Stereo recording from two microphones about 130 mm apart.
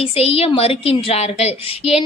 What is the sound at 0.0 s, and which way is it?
A woman's voice, 50° left (ahead or behind).